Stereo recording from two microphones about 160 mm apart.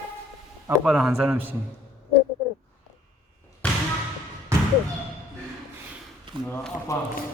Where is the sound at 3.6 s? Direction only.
10° left (ahead or behind).